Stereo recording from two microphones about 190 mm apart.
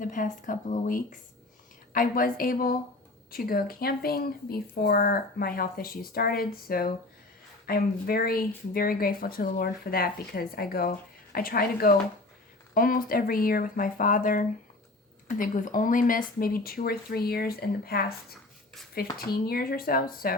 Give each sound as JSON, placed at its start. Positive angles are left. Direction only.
{"t": 0.0, "sound": "speech", "side_deg": 45}
{"t": 19.1, "sound": "speech", "side_deg": 50}